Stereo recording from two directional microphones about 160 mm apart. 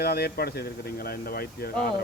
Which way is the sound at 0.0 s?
80° left.